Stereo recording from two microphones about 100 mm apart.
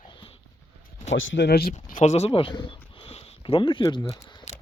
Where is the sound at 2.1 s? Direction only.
80° left; by 4.0 s 55° left (ahead or behind).